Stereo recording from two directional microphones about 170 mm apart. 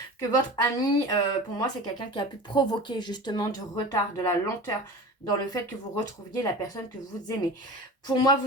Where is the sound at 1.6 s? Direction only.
25° left (ahead or behind).